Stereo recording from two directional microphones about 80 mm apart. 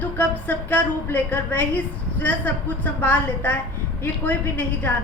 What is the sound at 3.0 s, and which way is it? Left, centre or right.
A woman's voice, left.